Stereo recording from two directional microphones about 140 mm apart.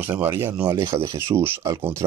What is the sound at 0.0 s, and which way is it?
Speech, 15° right (ahead or behind).